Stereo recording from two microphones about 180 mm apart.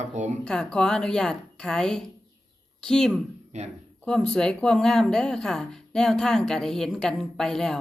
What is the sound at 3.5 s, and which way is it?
Speech, 40° right (ahead or behind).